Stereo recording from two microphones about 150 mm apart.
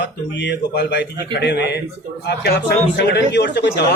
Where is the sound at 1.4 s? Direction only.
90° left.